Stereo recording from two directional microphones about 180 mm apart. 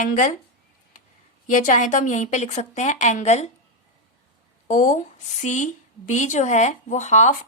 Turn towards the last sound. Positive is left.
turn(degrees=40)  # may be behind; listen again after turning